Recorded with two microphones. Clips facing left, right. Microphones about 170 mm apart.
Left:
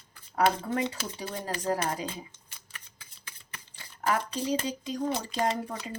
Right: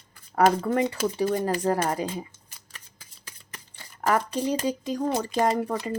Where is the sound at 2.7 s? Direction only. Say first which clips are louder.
Right 1 dB; 40° right (ahead or behind).